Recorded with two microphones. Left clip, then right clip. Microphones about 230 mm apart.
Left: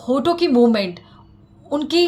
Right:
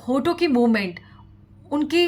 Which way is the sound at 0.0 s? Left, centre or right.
Right.